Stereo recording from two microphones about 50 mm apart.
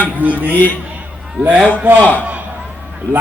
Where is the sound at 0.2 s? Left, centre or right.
Right.